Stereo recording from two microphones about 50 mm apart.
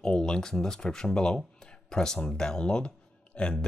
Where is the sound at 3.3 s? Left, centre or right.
Left.